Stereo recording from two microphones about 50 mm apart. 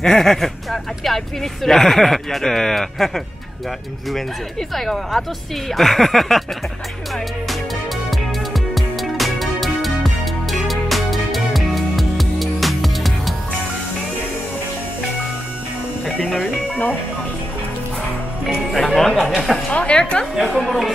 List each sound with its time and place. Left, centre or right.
0.0 s speech: centre
4.1 s speech: centre
8.1 s music: centre
16.3 s speech: centre
18.5 s speech: centre
19.2 s speech: centre
19.7 s a woman's voice: left
20.6 s speech: centre